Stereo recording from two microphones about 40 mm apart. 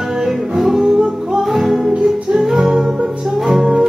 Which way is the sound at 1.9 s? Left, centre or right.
Right.